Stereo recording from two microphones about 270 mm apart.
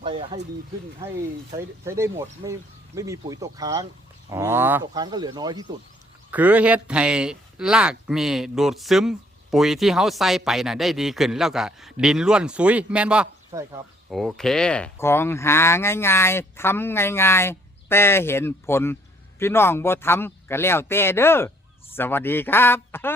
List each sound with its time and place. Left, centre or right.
0.0 s speech: centre